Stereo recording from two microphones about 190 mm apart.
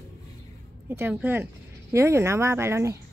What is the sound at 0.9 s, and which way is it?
A woman's voice, 10° right (ahead or behind).